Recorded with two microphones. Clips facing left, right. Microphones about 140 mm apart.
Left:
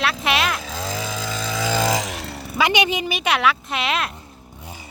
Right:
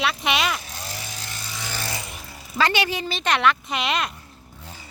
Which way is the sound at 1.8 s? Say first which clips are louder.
Left 11 dB; 90° left.